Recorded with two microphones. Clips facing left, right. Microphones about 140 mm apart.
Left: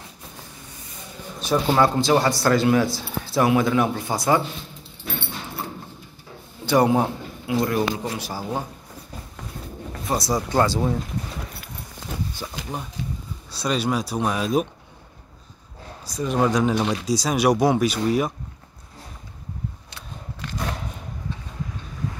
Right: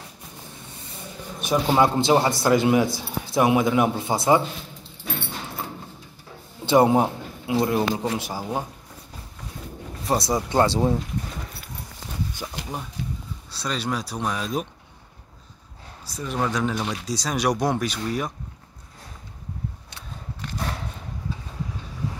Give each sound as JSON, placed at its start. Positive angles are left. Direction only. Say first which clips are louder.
{"t": 1.4, "sound": "a man's voice", "louder": "even", "side_deg": -15}
{"t": 6.6, "sound": "a man's voice", "louder": "right 1 dB", "side_deg": -25}
{"t": 10.0, "sound": "a man's voice", "louder": "right 1 dB", "side_deg": -25}
{"t": 12.4, "sound": "a sound", "louder": "even", "side_deg": -10}
{"t": 13.5, "sound": "speech", "louder": "left 4 dB", "side_deg": 10}
{"t": 16.1, "sound": "speech", "louder": "left 5 dB", "side_deg": 15}
{"t": 17.0, "sound": "speech", "louder": "left 2 dB", "side_deg": 10}